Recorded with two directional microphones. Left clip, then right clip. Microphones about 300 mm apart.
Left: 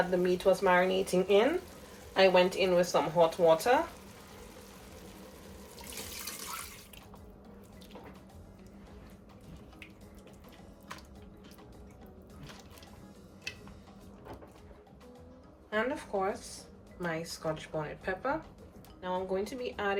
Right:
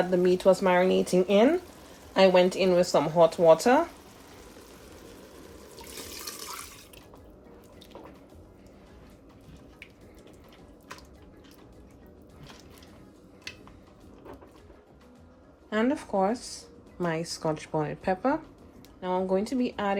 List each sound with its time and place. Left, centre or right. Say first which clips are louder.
0.2 s speech: right 5 dB; right
15.7 s speech: right 5 dB; right